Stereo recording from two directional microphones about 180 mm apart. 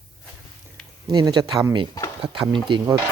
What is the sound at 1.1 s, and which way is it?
Speech, 25° right (ahead or behind).